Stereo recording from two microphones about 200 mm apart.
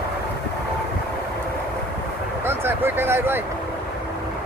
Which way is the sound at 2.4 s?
10° right (ahead or behind).